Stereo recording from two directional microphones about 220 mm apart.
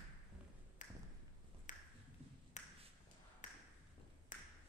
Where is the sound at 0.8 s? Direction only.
35° left (ahead or behind).